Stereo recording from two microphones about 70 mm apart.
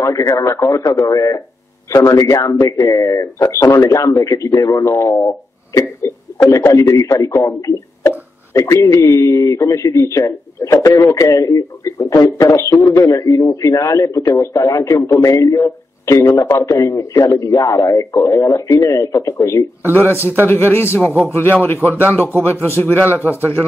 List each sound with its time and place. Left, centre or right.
0.4 s a man's voice: left
19.4 s a man's voice: left